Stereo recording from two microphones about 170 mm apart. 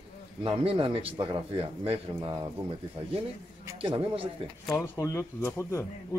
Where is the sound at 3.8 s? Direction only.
30° right (ahead or behind).